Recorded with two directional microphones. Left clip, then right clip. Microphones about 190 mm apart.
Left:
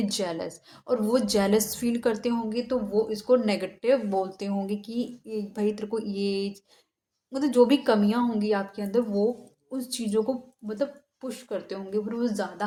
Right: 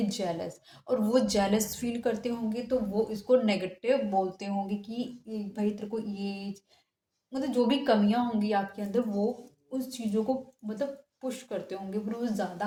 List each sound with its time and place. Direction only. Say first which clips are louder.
0.0 s a woman's voice: left 3 dB; 40° left (ahead or behind)